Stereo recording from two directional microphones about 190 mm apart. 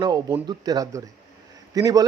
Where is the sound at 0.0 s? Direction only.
20° right (ahead or behind).